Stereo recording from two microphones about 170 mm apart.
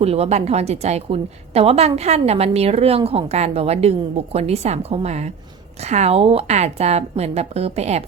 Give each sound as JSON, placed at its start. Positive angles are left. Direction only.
{"t": 0.0, "sound": "a woman's voice", "side_deg": -35}